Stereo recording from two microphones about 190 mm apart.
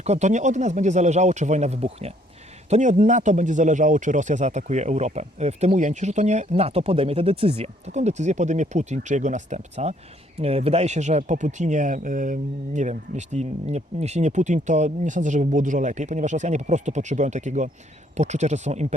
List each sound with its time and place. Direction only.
0.0 s speech: 35° right (ahead or behind)